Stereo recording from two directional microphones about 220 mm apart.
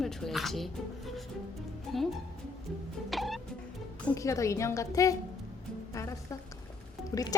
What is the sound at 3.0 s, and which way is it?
Music, centre (ahead or behind).